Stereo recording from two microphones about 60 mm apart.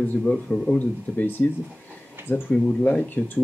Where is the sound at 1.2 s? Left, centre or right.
Left.